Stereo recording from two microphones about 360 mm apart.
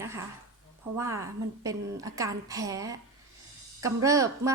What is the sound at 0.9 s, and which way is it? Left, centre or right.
A woman's voice, centre.